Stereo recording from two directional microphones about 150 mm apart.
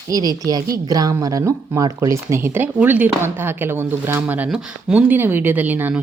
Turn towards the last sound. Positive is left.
turn(degrees=-10)  # may be behind; listen again after turning